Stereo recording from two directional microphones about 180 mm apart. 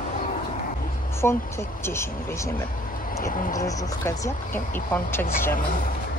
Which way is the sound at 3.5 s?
20° left (ahead or behind).